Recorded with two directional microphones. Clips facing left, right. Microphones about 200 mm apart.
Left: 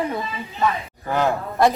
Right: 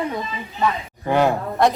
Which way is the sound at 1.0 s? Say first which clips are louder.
Right 4 dB; 15° right (ahead or behind).